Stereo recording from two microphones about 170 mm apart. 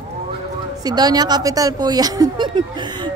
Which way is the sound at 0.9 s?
25° right (ahead or behind).